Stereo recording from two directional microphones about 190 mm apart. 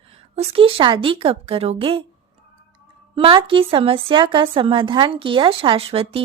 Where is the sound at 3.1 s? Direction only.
25° right (ahead or behind).